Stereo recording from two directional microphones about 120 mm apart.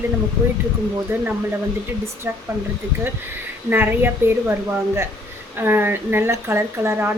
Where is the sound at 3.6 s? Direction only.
15° right (ahead or behind).